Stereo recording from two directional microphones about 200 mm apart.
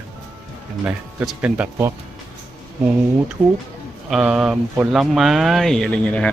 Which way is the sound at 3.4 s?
10° right (ahead or behind).